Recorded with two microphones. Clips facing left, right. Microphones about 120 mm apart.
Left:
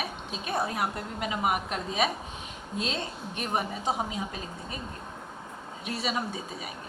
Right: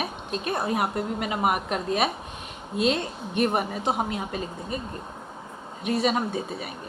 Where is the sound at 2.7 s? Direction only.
65° right (ahead or behind).